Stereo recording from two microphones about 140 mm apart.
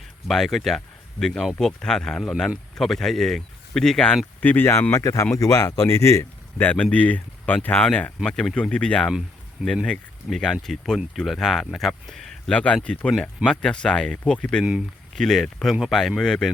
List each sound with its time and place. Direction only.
0.3 s speech: centre (ahead or behind)
9.1 s speech: 5° right (ahead or behind)